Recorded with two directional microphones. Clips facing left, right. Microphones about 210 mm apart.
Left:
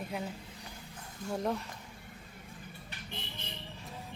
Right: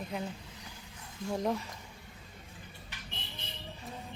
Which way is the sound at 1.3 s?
Centre (ahead or behind).